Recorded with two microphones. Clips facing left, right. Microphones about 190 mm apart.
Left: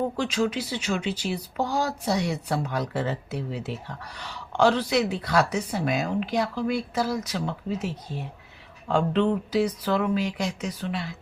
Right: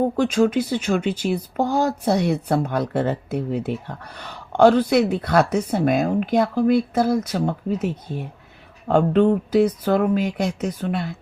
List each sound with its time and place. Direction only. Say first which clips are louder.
0.0 s speech: right 7 dB; 50° right (ahead or behind)